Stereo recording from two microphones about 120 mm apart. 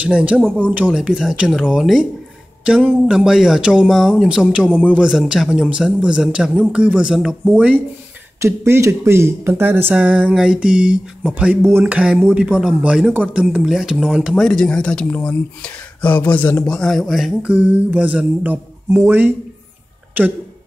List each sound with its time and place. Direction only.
0.0 s speech: 10° right (ahead or behind)
0.4 s speech: 10° left (ahead or behind)
0.7 s speech: 10° right (ahead or behind)